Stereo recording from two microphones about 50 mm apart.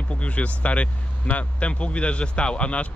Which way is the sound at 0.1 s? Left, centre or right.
Left.